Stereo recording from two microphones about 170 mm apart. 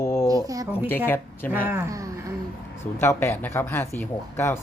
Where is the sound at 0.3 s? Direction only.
20° right (ahead or behind).